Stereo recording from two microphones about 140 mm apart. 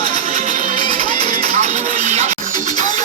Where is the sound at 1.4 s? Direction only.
75° right (ahead or behind); by 2.3 s 55° right (ahead or behind).